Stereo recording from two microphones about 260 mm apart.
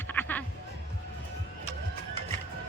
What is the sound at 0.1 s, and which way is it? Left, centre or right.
Music, centre.